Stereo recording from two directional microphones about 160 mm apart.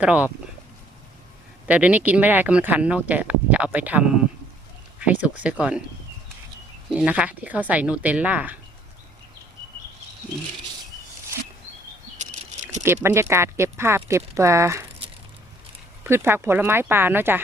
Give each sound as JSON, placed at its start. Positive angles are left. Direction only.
{"t": 0.0, "sound": "speech", "side_deg": -10}
{"t": 1.6, "sound": "speech", "side_deg": -10}
{"t": 6.9, "sound": "speech", "side_deg": -10}
{"t": 12.1, "sound": "a sound", "side_deg": -45}
{"t": 12.8, "sound": "speech", "side_deg": -15}
{"t": 16.0, "sound": "speech", "side_deg": -15}